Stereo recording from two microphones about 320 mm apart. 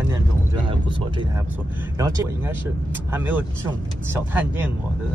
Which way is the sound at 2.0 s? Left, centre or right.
Centre.